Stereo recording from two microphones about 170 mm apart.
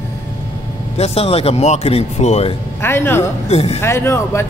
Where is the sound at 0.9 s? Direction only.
35° left (ahead or behind).